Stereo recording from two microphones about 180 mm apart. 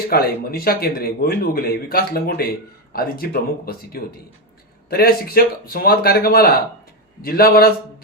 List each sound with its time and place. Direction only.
0.1 s speech: 60° left (ahead or behind)